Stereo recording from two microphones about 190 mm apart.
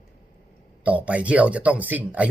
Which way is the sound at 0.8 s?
10° right (ahead or behind).